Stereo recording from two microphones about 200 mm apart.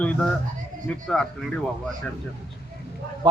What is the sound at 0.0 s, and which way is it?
Speech, 5° left (ahead or behind).